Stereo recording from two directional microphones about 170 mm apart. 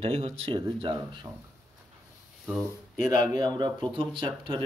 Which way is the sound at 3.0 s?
20° right (ahead or behind).